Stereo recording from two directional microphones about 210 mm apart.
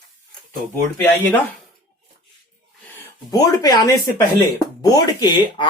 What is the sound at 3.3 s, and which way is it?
Speech, 15° left (ahead or behind).